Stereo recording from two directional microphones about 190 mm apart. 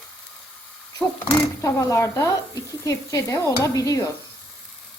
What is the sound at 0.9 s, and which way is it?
Speech, 15° left (ahead or behind).